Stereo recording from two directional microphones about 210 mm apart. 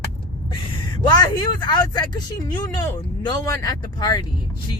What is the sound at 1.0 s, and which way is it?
Speech, 20° left (ahead or behind).